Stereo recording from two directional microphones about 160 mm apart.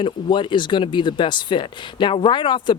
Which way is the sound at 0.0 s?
30° left (ahead or behind).